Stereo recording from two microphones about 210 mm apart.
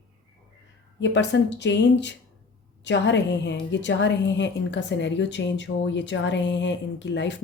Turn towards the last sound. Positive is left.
turn(degrees=55)  # may be behind; listen again after turning